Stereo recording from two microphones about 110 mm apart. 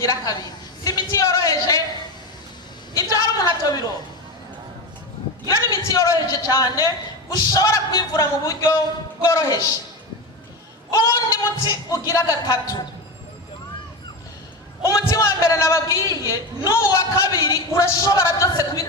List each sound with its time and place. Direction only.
0.0 s speech: 30° left (ahead or behind)
0.9 s a sound: 30° left (ahead or behind)
3.0 s a man's voice: 30° left (ahead or behind)
5.5 s speech: 35° left (ahead or behind)
10.9 s speech: 35° left (ahead or behind)
14.8 s a man's voice: 30° left (ahead or behind)